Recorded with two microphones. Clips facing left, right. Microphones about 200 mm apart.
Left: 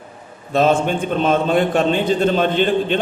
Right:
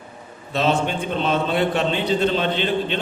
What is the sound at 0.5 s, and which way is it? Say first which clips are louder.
A man's voice: left 5 dB; 50° left (ahead or behind).